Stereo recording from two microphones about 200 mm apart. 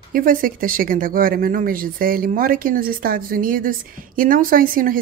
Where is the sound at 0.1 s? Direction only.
45° right (ahead or behind).